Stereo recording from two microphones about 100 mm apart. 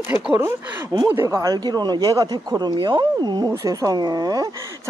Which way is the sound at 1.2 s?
35° right (ahead or behind).